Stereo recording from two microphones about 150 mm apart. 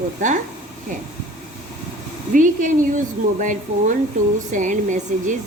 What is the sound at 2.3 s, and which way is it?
Speech, 60° right (ahead or behind).